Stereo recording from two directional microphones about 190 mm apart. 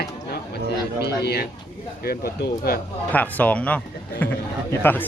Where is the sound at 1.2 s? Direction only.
55° left (ahead or behind).